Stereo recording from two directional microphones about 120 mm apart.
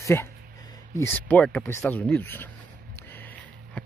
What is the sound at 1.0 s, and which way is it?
Speech, 15° left (ahead or behind).